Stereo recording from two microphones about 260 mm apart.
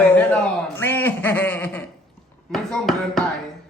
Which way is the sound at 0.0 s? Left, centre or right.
Centre.